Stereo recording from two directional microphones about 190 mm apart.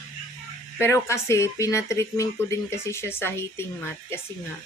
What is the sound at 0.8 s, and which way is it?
Speech, 15° left (ahead or behind).